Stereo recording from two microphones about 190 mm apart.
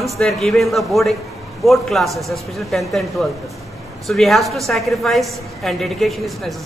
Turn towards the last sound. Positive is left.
turn(degrees=0)  # may be behind; listen again after turning